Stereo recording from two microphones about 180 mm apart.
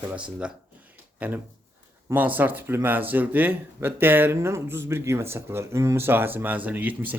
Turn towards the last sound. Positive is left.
turn(degrees=-10)  # may be behind; listen again after turning